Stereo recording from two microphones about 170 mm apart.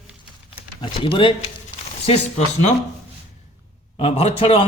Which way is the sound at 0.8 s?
30° left (ahead or behind).